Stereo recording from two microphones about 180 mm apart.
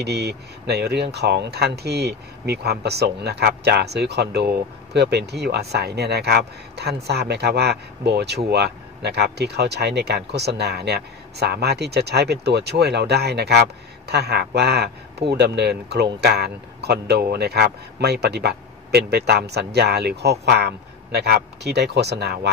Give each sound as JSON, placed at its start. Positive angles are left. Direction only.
{"t": 0.0, "sound": "speech", "side_deg": -65}